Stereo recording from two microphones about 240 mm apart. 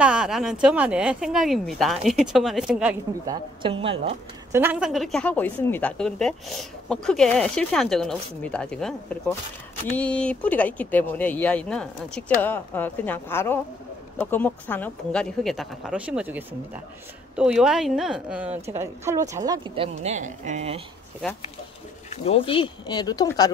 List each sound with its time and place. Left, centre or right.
0.0 s a woman's voice: centre
3.6 s a woman's voice: right
4.5 s a woman's voice: centre; by 20.8 s right
22.1 s speech: left